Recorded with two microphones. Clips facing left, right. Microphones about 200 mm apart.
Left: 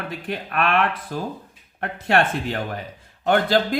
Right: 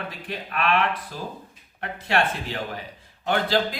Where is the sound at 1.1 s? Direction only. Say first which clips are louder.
Left 6 dB; 55° left (ahead or behind).